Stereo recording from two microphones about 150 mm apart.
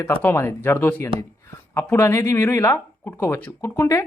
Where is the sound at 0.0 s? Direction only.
15° left (ahead or behind).